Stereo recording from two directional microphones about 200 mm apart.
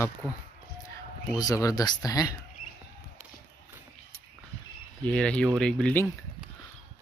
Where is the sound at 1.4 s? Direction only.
15° left (ahead or behind).